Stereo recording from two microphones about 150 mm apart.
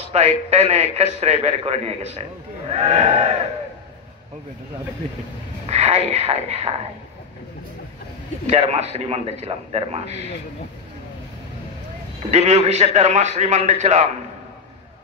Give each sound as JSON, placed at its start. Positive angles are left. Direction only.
{"t": 0.1, "sound": "a man's voice", "side_deg": -45}
{"t": 5.7, "sound": "a man's voice", "side_deg": -45}
{"t": 8.5, "sound": "a man's voice", "side_deg": -45}
{"t": 12.3, "sound": "a man's voice", "side_deg": -45}